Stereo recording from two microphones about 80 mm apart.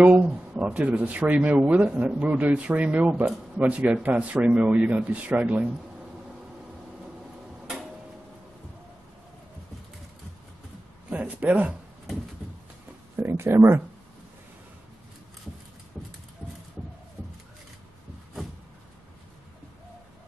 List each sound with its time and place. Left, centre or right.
0.0 s speech: centre
11.1 s a sound: centre
13.1 s speech: right